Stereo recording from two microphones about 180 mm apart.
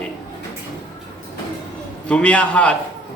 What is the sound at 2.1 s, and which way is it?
Speech, 5° left (ahead or behind).